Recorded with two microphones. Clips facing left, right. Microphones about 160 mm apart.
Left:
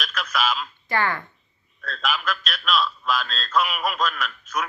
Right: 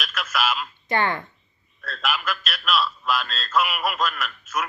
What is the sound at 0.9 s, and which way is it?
Speech, 20° right (ahead or behind).